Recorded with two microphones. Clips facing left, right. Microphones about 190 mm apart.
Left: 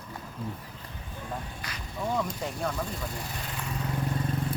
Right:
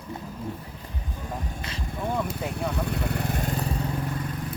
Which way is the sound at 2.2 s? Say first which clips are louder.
Right 2 dB; 5° right (ahead or behind).